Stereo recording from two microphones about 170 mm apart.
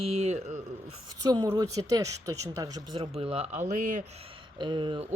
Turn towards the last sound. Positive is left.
turn(degrees=-30)  # may be behind; listen again after turning